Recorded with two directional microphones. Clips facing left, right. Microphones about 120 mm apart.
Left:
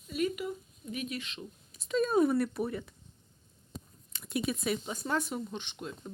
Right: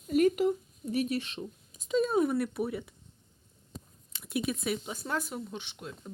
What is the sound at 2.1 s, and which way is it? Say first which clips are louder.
Speech: left 1 dB; centre (ahead or behind).